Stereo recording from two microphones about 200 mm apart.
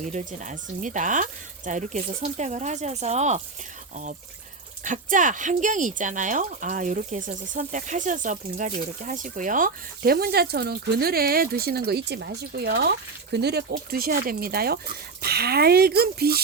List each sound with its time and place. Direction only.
0.0 s speech: 35° right (ahead or behind)
4.8 s speech: 40° right (ahead or behind)